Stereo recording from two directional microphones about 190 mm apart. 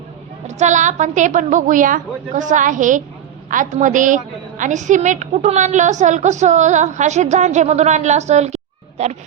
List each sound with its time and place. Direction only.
0.4 s a woman's voice: 40° right (ahead or behind)